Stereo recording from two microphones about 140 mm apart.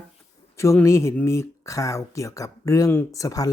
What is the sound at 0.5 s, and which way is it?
Speech, 20° left (ahead or behind).